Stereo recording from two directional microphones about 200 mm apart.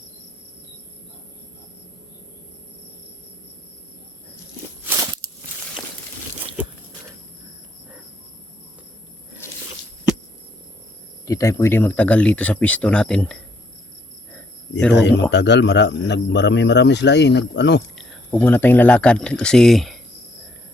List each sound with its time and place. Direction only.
11.3 s speech: 15° left (ahead or behind)
14.9 s speech: 60° left (ahead or behind)
17.9 s speech: 5° left (ahead or behind)